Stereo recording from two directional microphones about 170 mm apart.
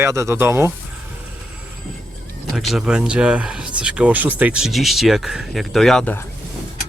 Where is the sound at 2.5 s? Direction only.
Centre (ahead or behind).